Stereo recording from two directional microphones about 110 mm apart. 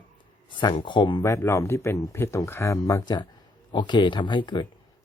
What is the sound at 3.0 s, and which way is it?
Speech, 40° left (ahead or behind).